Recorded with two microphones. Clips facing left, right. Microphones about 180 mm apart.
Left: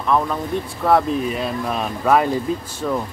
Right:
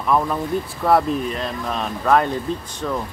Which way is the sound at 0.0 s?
5° right (ahead or behind).